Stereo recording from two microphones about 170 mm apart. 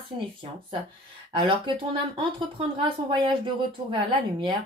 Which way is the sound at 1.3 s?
30° right (ahead or behind).